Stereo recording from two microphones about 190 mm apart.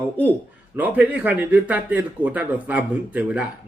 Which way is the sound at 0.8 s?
10° right (ahead or behind).